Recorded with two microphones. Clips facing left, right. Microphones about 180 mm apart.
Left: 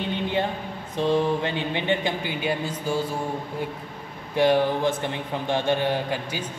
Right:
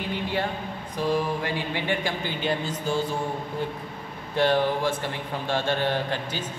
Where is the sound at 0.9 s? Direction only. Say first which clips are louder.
Left 4 dB; 25° left (ahead or behind).